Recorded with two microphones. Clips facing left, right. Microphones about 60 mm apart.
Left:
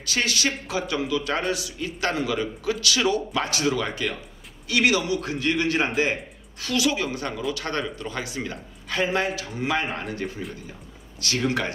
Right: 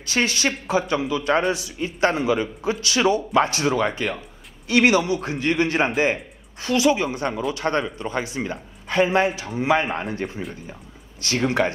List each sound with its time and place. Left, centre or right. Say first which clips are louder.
0.0 s speech: right 3 dB; right